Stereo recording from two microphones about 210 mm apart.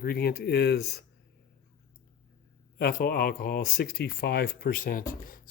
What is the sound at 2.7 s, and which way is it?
Speech, 45° left (ahead or behind).